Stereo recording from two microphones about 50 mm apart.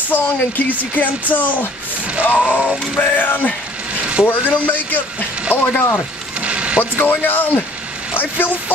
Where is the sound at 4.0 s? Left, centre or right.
Right.